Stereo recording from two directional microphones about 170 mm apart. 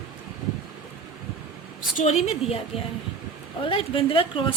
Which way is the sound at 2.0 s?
40° left (ahead or behind).